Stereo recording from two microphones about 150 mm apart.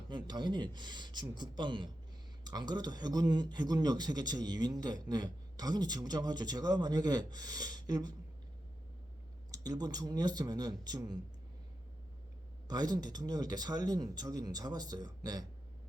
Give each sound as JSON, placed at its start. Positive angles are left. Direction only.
{"t": 0.3, "sound": "speech", "side_deg": -30}
{"t": 9.5, "sound": "speech", "side_deg": -25}
{"t": 12.6, "sound": "speech", "side_deg": -25}